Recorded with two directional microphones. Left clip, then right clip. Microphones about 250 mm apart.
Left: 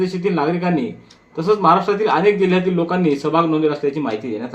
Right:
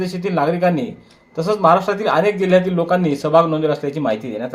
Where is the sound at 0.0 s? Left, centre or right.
Right.